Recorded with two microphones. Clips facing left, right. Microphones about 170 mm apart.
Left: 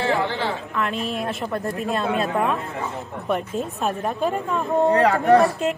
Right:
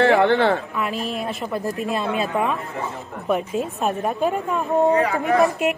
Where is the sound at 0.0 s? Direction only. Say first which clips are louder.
Right 7 dB; 60° right (ahead or behind).